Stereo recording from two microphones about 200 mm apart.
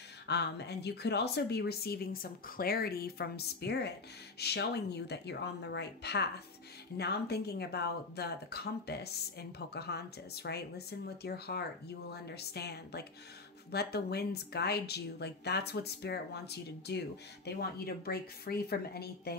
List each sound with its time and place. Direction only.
0.3 s speech: 55° left (ahead or behind)